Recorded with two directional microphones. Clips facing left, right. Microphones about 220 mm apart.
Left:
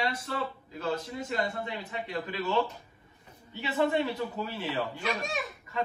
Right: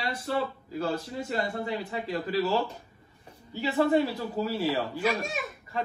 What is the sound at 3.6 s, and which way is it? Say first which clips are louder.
Speech: right 4 dB; 40° right (ahead or behind).